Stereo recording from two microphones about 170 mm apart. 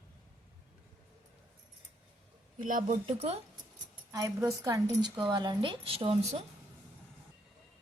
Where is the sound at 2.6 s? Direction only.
50° right (ahead or behind).